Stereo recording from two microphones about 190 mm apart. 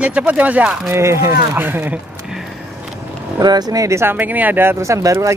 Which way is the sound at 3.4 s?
20° right (ahead or behind).